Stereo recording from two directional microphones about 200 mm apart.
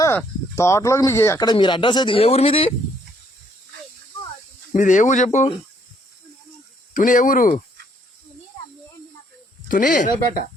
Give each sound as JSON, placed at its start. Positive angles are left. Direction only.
{"t": 0.5, "sound": "speech", "side_deg": 15}
{"t": 4.7, "sound": "speech", "side_deg": 35}
{"t": 6.9, "sound": "speech", "side_deg": 40}
{"t": 9.6, "sound": "speech", "side_deg": 40}